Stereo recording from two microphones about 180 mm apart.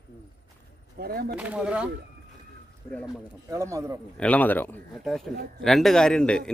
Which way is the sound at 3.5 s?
15° right (ahead or behind).